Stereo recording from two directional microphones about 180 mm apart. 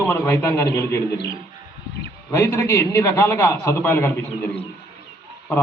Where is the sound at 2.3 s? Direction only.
15° left (ahead or behind).